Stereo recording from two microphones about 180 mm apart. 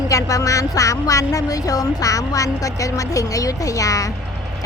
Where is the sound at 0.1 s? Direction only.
20° left (ahead or behind).